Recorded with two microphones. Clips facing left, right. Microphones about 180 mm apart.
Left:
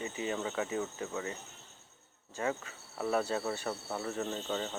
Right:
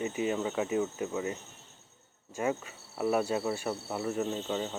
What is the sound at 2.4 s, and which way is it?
Speech, 15° right (ahead or behind).